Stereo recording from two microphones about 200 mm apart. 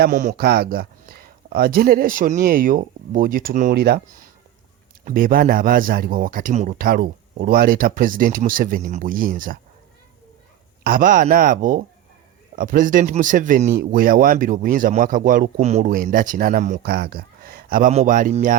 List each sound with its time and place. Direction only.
0.0 s speech: 40° right (ahead or behind)
5.0 s speech: 45° right (ahead or behind)
10.8 s speech: 45° right (ahead or behind)